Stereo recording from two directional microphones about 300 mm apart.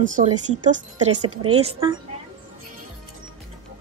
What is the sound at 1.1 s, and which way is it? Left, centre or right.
Speech, right.